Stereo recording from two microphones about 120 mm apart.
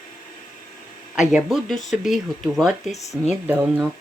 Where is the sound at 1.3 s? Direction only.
Centre (ahead or behind).